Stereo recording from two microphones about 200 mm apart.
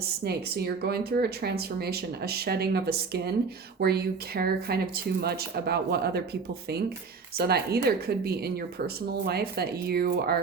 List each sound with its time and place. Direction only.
0.0 s speech: 50° right (ahead or behind)